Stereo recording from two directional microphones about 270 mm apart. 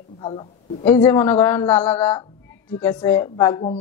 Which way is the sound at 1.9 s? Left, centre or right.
Left.